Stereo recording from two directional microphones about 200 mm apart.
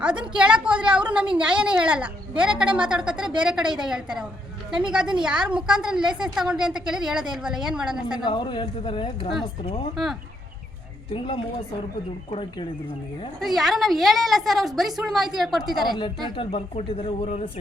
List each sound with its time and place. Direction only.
0.0 s a woman's voice: 5° right (ahead or behind)
8.2 s speech: 25° left (ahead or behind)
9.9 s a woman's voice: centre (ahead or behind)
11.1 s speech: 25° left (ahead or behind)
13.4 s a woman's voice: centre (ahead or behind)
16.3 s speech: 25° left (ahead or behind)